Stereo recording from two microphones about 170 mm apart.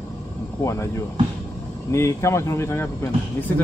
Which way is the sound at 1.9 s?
15° left (ahead or behind).